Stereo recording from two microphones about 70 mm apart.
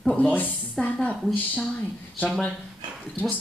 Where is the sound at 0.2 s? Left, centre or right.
Left.